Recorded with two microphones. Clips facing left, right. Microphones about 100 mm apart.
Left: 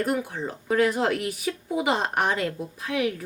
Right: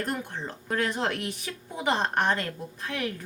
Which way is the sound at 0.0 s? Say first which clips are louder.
Left 5 dB; 5° left (ahead or behind).